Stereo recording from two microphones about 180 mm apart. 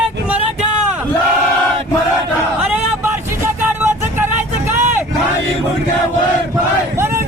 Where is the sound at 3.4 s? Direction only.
10° right (ahead or behind).